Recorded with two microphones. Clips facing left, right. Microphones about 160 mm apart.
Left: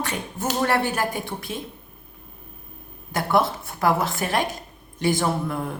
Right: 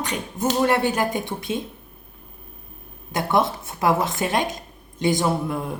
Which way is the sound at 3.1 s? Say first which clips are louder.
Even; 20° right (ahead or behind).